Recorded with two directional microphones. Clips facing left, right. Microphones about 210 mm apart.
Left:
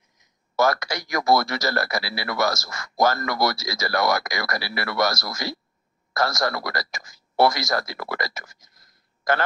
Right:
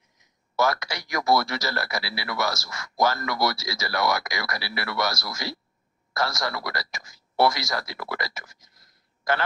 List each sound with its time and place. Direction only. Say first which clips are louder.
0.6 s speech: left 3 dB; 45° left (ahead or behind)